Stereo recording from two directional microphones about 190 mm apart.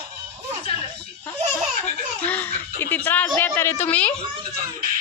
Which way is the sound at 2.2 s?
10° left (ahead or behind).